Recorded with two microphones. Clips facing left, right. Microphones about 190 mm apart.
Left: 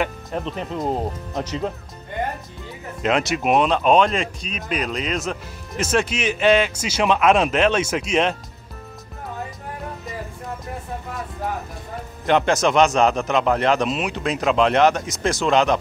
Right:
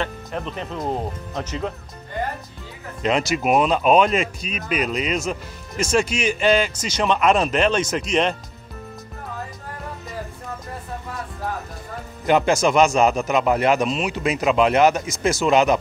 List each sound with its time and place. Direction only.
0.0 s speech: 5° left (ahead or behind)
3.0 s speech: centre (ahead or behind)
12.3 s speech: 5° right (ahead or behind)